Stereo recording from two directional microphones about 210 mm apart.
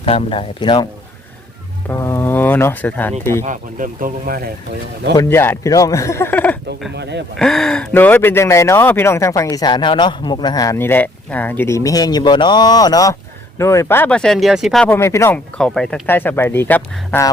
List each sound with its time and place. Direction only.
0.0 s speech: 25° left (ahead or behind)
1.9 s speech: 10° left (ahead or behind)
3.4 s speech: 40° right (ahead or behind)
5.1 s speech: 10° left (ahead or behind)
6.9 s speech: 55° right (ahead or behind)
7.3 s speech: centre (ahead or behind)